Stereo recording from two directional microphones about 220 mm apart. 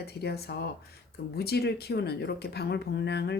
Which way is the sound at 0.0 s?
45° left (ahead or behind).